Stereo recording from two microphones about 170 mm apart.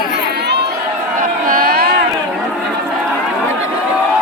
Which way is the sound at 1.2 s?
55° right (ahead or behind).